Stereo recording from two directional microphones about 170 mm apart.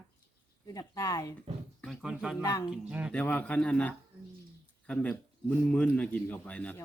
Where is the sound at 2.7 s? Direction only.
5° right (ahead or behind).